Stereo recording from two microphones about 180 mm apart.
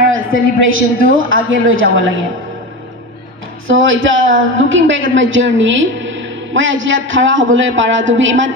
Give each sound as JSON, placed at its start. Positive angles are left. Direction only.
{"t": 0.3, "sound": "a woman's voice", "side_deg": -90}
{"t": 3.6, "sound": "a woman's voice", "side_deg": -90}